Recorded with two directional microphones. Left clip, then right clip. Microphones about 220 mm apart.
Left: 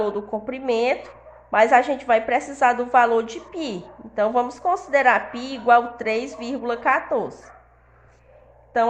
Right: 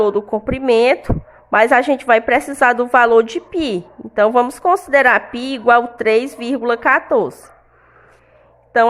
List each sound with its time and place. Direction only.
0.0 s a woman's voice: 45° right (ahead or behind)
8.7 s a woman's voice: 45° right (ahead or behind)